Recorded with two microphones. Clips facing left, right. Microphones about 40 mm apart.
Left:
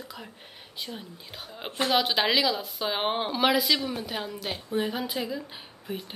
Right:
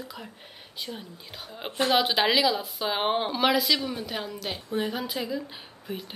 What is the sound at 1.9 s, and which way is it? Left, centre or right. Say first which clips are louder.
Speech: right 1 dB; centre.